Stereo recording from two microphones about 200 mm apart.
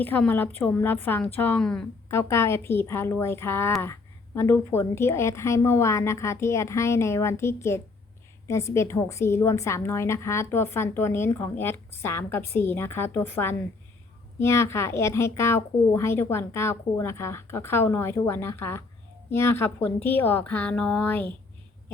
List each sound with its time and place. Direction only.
0.0 s a woman's voice: 10° left (ahead or behind)